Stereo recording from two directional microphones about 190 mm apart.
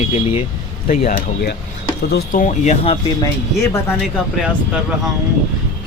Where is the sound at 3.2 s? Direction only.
15° left (ahead or behind).